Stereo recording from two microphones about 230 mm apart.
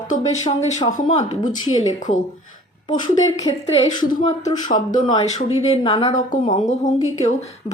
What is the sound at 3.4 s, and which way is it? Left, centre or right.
Speech, left.